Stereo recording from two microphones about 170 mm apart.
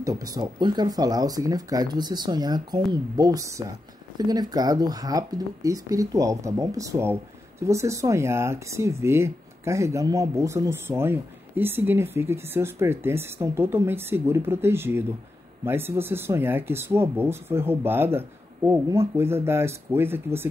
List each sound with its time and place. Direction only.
0.0 s speech: 20° right (ahead or behind)